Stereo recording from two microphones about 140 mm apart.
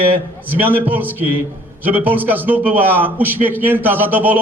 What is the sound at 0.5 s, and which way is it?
A man's voice, 15° right (ahead or behind).